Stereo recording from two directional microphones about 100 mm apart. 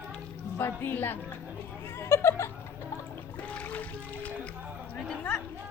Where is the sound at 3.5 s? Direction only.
15° left (ahead or behind).